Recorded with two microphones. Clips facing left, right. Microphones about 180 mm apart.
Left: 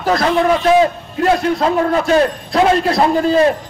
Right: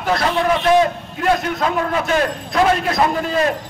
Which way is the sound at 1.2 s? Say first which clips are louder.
Left 4 dB; 35° left (ahead or behind).